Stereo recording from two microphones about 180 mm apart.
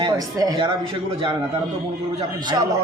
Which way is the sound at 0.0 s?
20° right (ahead or behind).